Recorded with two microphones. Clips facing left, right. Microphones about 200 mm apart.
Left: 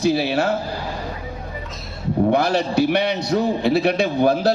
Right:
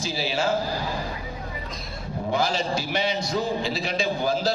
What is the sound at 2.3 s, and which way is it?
A man's voice, 65° left (ahead or behind).